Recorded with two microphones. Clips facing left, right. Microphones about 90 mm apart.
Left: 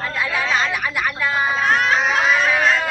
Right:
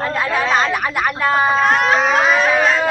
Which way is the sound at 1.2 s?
40° right (ahead or behind).